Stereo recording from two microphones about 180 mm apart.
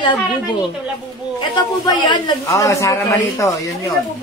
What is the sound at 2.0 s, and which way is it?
A woman's voice, 20° left (ahead or behind).